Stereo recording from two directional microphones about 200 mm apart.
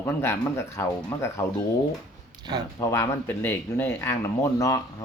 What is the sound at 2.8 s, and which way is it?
Speech, 15° left (ahead or behind).